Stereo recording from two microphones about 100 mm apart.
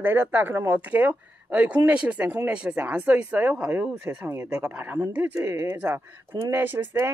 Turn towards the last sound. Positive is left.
turn(degrees=-20)  # may be behind; listen again after turning